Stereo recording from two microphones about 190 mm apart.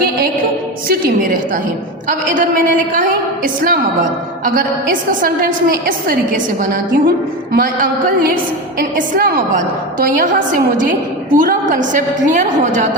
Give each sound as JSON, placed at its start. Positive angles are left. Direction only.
{"t": 0.9, "sound": "a woman's voice", "side_deg": -50}